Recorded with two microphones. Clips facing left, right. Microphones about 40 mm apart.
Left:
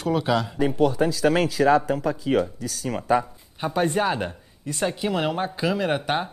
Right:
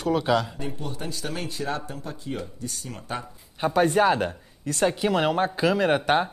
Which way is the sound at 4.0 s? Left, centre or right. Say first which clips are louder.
Right 3 dB; centre.